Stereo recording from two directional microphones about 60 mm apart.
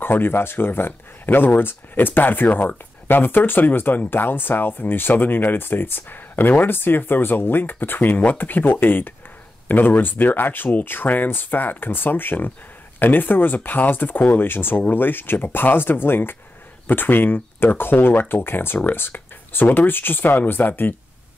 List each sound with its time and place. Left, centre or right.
0.0 s speech: left